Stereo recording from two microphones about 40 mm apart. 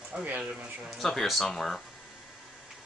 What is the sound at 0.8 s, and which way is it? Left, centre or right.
Speech, centre.